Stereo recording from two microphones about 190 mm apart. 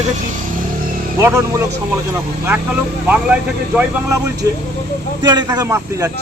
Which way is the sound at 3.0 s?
5° right (ahead or behind).